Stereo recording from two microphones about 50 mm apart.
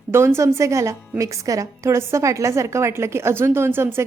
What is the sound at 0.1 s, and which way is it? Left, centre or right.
A woman's voice, right.